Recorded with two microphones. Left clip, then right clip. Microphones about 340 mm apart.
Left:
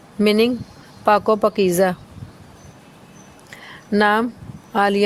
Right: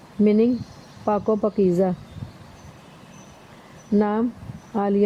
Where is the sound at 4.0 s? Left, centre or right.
Left.